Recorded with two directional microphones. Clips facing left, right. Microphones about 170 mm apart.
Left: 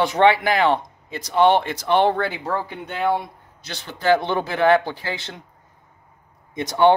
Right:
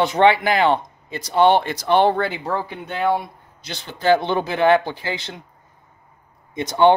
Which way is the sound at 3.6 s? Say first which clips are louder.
Right 1 dB; 25° right (ahead or behind).